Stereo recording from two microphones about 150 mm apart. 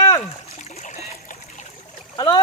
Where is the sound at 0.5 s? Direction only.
55° left (ahead or behind).